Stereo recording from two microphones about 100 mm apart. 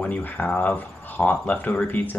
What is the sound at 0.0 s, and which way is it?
Speech, 15° left (ahead or behind).